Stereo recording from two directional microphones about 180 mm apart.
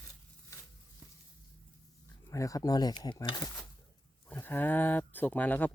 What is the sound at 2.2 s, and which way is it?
Speech, 20° left (ahead or behind).